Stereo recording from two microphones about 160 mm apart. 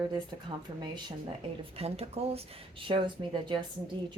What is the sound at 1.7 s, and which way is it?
Speech, 40° right (ahead or behind).